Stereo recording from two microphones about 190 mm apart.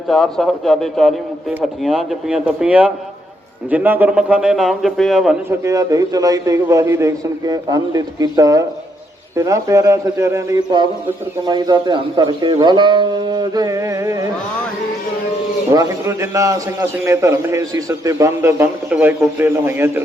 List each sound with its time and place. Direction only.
0.1 s a man's voice: centre (ahead or behind)
5.5 s a man's voice: 15° right (ahead or behind)
15.7 s a man's voice: 15° right (ahead or behind)